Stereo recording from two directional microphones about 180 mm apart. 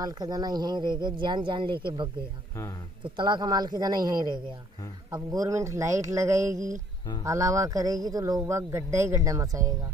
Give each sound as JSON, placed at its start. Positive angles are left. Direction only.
{"t": 0.0, "sound": "speech", "side_deg": -20}
{"t": 3.0, "sound": "a man's voice", "side_deg": -25}